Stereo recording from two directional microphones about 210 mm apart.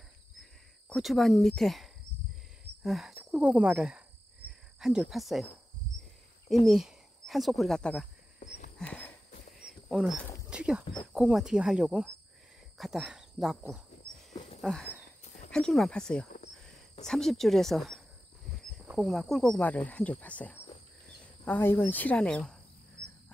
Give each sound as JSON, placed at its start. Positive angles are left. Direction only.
{"t": 0.4, "sound": "speech", "side_deg": 0}
{"t": 6.5, "sound": "speech", "side_deg": 0}
{"t": 8.7, "sound": "a sound", "side_deg": 5}
{"t": 9.6, "sound": "cricket", "side_deg": 0}
{"t": 10.5, "sound": "speech", "side_deg": -5}
{"t": 14.6, "sound": "walk", "side_deg": 0}
{"t": 15.2, "sound": "a sound", "side_deg": 35}
{"t": 15.5, "sound": "speech", "side_deg": 0}